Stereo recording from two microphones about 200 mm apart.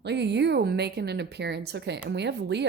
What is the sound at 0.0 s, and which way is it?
A woman's voice, 60° right (ahead or behind).